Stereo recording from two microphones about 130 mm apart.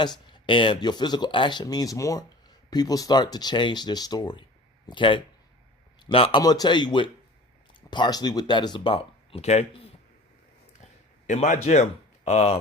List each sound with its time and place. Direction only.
0.0 s a man's voice: 35° left (ahead or behind)
6.4 s speech: 30° left (ahead or behind); by 9.9 s 50° left (ahead or behind)
11.3 s speech: 70° left (ahead or behind)